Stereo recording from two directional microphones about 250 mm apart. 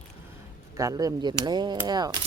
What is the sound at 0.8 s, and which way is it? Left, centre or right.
Speech, centre.